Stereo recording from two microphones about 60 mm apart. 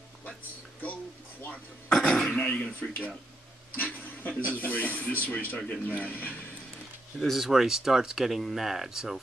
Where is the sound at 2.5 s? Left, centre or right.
Left.